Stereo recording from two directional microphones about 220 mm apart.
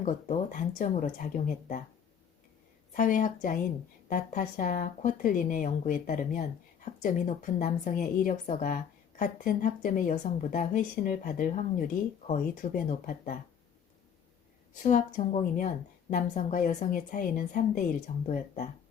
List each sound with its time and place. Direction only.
0.0 s a woman's voice: 35° left (ahead or behind)
2.9 s a woman's voice: 35° left (ahead or behind)
14.8 s a woman's voice: 35° left (ahead or behind)